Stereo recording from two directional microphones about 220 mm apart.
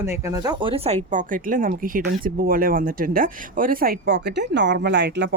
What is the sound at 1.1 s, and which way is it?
Speech, 35° right (ahead or behind).